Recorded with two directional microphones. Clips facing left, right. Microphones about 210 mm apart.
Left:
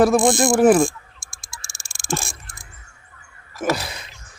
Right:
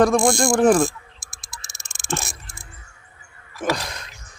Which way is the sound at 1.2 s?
25° left (ahead or behind).